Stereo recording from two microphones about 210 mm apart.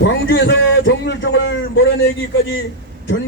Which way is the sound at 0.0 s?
60° left (ahead or behind).